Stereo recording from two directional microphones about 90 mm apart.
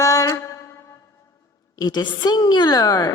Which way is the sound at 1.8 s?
50° left (ahead or behind).